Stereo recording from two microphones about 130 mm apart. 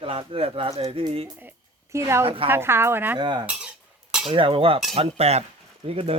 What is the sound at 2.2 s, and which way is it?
Speech, 45° right (ahead or behind).